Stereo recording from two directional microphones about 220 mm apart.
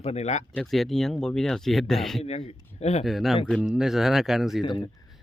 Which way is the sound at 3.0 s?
Centre (ahead or behind).